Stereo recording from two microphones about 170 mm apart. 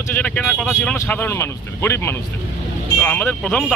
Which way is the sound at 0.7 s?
15° left (ahead or behind).